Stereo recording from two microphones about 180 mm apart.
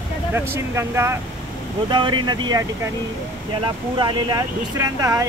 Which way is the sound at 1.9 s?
25° right (ahead or behind).